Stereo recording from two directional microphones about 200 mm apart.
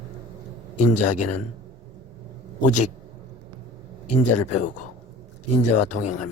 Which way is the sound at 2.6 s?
40° left (ahead or behind).